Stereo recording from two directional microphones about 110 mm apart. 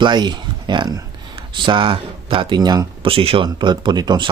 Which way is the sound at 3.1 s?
55° right (ahead or behind).